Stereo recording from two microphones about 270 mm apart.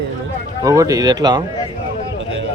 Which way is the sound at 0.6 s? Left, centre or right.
Centre.